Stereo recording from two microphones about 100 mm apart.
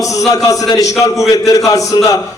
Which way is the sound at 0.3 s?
35° left (ahead or behind).